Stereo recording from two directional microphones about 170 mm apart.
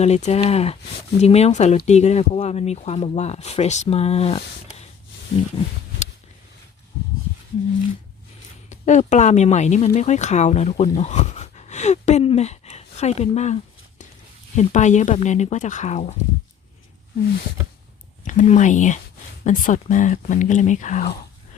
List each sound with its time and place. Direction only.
0.0 s speech: 40° left (ahead or behind)
8.7 s speech: 45° left (ahead or behind)
18.3 s speech: 45° left (ahead or behind)